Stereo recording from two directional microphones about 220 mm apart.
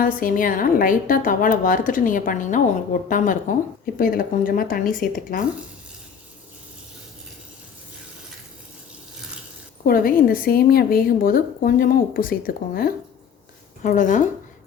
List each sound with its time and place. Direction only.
0.0 s a woman's voice: 40° left (ahead or behind)
9.8 s a woman's voice: 40° left (ahead or behind)